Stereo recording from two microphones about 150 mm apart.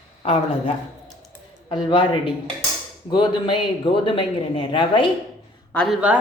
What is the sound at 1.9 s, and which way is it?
A woman's voice, 35° left (ahead or behind).